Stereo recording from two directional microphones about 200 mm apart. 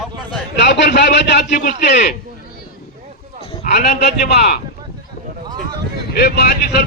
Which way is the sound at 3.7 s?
60° left (ahead or behind).